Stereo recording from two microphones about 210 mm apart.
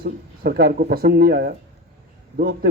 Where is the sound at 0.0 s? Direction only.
45° right (ahead or behind).